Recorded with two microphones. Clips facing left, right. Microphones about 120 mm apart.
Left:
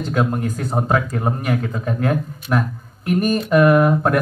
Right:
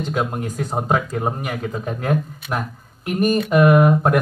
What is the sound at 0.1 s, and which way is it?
Speech, 15° right (ahead or behind).